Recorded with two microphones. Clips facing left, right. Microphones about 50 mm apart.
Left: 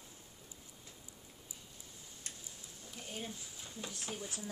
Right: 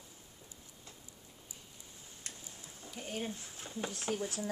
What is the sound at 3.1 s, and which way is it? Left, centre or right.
Speech, right.